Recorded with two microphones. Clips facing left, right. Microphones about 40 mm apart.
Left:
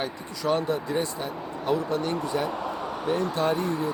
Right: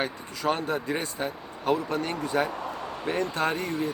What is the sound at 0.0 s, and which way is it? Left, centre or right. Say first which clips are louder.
Speech: right 1 dB; right.